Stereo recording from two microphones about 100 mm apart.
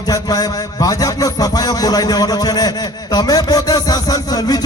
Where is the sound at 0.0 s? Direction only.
40° left (ahead or behind).